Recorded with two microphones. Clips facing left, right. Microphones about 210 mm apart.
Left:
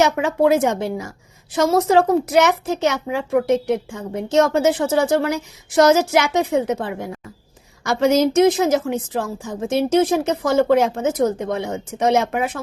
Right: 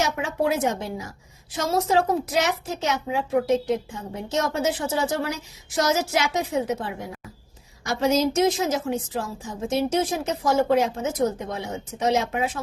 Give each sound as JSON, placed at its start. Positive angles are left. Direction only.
{"t": 0.0, "sound": "a woman's voice", "side_deg": 65}
{"t": 1.5, "sound": "a woman's voice", "side_deg": 75}
{"t": 4.6, "sound": "a woman's voice", "side_deg": 60}
{"t": 7.9, "sound": "a woman's voice", "side_deg": 70}
{"t": 11.9, "sound": "a woman's voice", "side_deg": 70}